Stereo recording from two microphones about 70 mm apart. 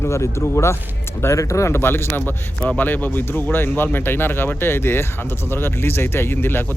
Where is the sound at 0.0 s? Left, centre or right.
Left.